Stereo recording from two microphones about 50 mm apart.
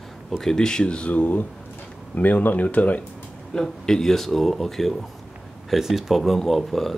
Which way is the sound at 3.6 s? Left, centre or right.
Centre.